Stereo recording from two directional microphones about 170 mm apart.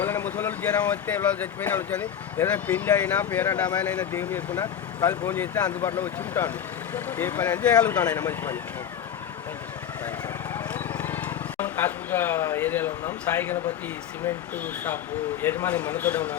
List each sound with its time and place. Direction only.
0.0 s speech: 10° left (ahead or behind)
4.5 s speech: 25° left (ahead or behind); by 8.0 s 10° left (ahead or behind)
8.0 s speech: 20° left (ahead or behind)
10.5 s a sound: 10° left (ahead or behind)
14.3 s speech: 10° left (ahead or behind)